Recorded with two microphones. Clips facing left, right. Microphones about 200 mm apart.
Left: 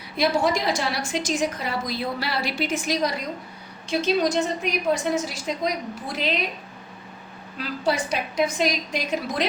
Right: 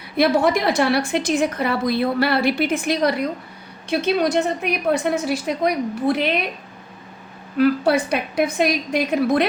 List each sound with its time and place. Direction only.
0.2 s a woman's voice: 60° right (ahead or behind)
7.6 s a woman's voice: 60° right (ahead or behind)